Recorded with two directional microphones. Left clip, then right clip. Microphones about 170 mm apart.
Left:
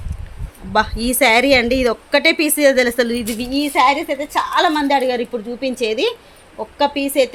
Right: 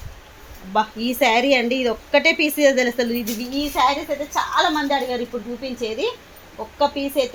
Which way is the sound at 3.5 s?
65° left (ahead or behind).